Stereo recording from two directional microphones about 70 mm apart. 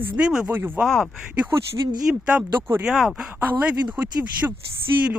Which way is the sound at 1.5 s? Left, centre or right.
Right.